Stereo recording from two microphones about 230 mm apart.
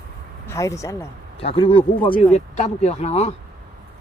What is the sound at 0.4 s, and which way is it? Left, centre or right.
Speech, centre.